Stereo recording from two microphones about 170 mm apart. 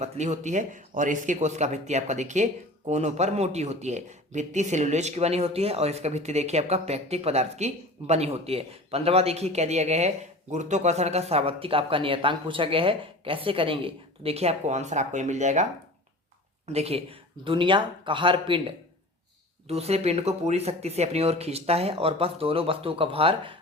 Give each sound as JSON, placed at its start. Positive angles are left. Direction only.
{"t": 0.0, "sound": "speech", "side_deg": -40}
{"t": 16.6, "sound": "speech", "side_deg": -35}
{"t": 19.6, "sound": "speech", "side_deg": -35}